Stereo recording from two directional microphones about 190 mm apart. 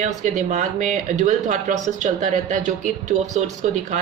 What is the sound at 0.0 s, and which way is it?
Speech, 40° right (ahead or behind).